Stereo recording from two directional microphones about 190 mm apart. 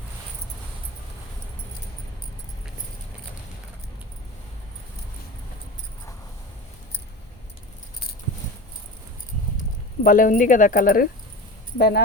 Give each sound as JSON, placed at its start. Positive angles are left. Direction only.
{"t": 10.0, "sound": "speech", "side_deg": 45}